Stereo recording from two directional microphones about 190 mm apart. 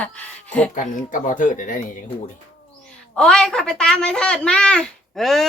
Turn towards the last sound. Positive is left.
turn(degrees=0)  # may be behind; listen again after turning